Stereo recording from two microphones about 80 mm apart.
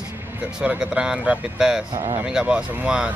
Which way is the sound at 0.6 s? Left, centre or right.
Centre.